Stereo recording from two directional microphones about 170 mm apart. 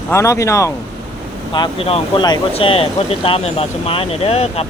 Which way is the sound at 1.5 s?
30° left (ahead or behind).